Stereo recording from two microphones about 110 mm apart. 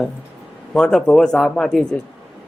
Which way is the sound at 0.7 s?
5° left (ahead or behind).